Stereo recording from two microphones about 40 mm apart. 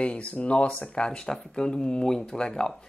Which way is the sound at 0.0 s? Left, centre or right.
Left.